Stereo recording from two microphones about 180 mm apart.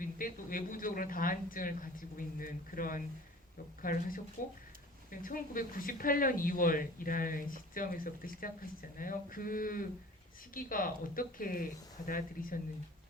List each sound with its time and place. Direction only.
0.0 s a woman's voice: 50° left (ahead or behind)
5.2 s a woman's voice: 50° left (ahead or behind)